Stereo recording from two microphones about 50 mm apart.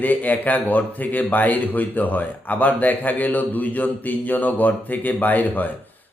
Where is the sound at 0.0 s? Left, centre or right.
Left.